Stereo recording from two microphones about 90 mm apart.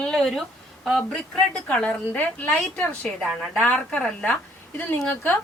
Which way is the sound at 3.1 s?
Centre (ahead or behind).